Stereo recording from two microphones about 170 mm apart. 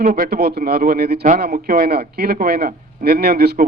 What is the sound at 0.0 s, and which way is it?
A man's voice, 65° right (ahead or behind).